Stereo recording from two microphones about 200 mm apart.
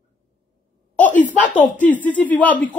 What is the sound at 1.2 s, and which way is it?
Speech, 40° left (ahead or behind).